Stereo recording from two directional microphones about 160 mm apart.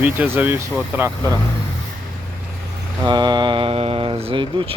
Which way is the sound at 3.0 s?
25° right (ahead or behind).